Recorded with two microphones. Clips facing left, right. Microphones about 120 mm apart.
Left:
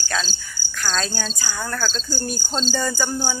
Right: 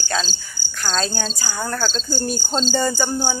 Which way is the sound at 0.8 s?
25° right (ahead or behind).